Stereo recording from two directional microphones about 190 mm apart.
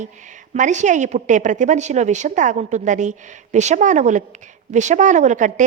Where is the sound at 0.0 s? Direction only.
40° right (ahead or behind).